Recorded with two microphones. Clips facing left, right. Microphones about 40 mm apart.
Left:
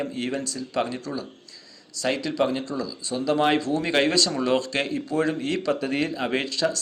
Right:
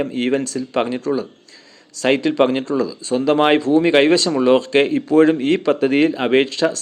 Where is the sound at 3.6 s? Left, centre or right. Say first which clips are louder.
Right 9 dB; right.